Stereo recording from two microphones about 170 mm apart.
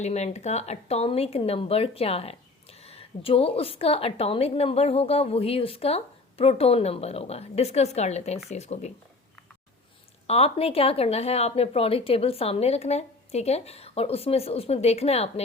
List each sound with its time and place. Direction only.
0.0 s a woman's voice: 40° left (ahead or behind)
10.2 s a woman's voice: 35° left (ahead or behind)